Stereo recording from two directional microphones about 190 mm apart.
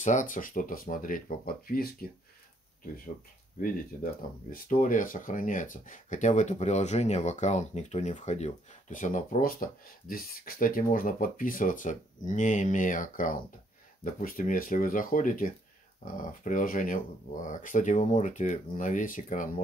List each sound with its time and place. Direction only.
0.0 s speech: 40° left (ahead or behind)
3.6 s speech: 45° left (ahead or behind)